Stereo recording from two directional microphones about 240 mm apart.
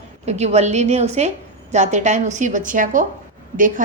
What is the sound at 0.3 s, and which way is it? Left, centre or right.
A woman's voice, right.